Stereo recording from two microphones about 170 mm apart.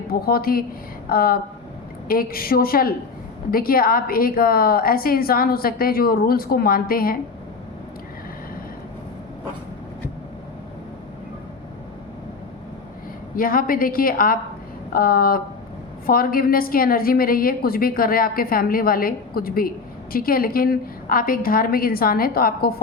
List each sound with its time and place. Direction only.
0.1 s a woman's voice: 60° left (ahead or behind)
13.3 s a woman's voice: 55° left (ahead or behind)